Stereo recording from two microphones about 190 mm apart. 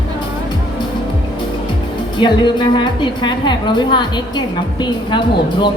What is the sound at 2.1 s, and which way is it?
A woman's voice, 25° left (ahead or behind).